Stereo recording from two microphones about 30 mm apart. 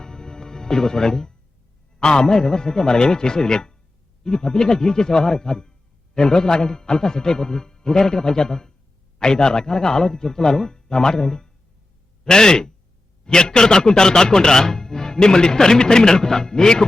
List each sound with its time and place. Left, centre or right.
0.0 s music: left
2.0 s speech: left